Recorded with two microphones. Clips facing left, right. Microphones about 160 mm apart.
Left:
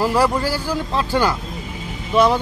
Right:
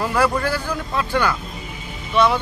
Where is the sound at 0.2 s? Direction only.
30° left (ahead or behind).